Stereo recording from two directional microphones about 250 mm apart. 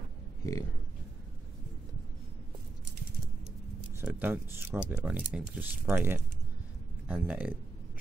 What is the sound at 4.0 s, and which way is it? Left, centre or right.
Speech, centre.